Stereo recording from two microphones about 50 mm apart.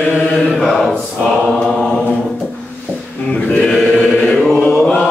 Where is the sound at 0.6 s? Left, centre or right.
Centre.